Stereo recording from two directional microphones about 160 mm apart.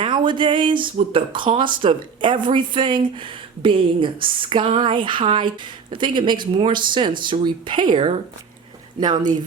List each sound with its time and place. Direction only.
0.0 s speech: 30° right (ahead or behind)